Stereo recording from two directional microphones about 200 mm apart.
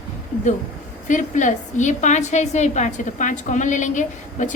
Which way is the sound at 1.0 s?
40° left (ahead or behind).